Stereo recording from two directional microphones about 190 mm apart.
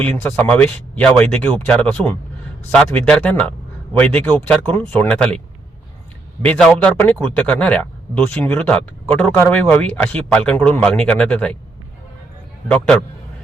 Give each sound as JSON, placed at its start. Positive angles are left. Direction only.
{"t": 0.0, "sound": "a man's voice", "side_deg": 5}
{"t": 6.4, "sound": "a man's voice", "side_deg": 5}
{"t": 12.7, "sound": "a man's voice", "side_deg": 5}